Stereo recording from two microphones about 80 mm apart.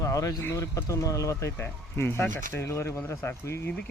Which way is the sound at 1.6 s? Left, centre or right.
Left.